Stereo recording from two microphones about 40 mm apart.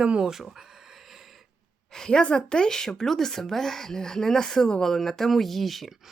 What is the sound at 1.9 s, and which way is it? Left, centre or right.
A woman's voice, centre.